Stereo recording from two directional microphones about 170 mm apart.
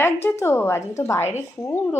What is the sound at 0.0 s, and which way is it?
Speech, 15° left (ahead or behind).